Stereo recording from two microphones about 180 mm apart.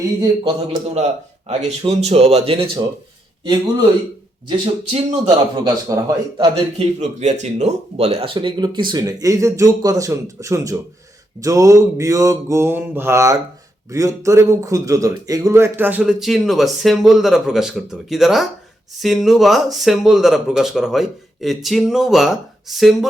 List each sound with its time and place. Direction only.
0.0 s speech: 25° right (ahead or behind)
3.4 s speech: 20° right (ahead or behind)
6.7 s speech: 40° right (ahead or behind); by 10.8 s 20° right (ahead or behind)
11.3 s mantra: 20° right (ahead or behind)
13.9 s speech: 20° right (ahead or behind); by 23.0 s centre (ahead or behind)